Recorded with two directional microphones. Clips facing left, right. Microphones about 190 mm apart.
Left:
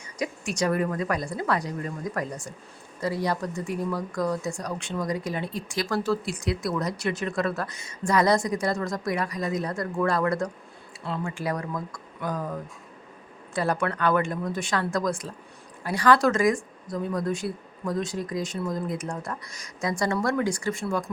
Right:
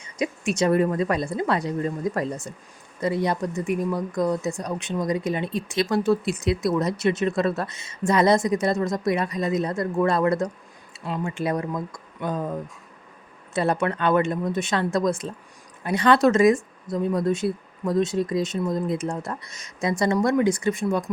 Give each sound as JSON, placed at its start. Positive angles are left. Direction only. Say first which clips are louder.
{"t": 0.0, "sound": "speech", "louder": "right 5 dB", "side_deg": -20}